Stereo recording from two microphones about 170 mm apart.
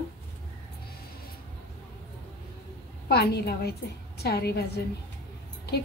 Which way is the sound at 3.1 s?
70° left (ahead or behind).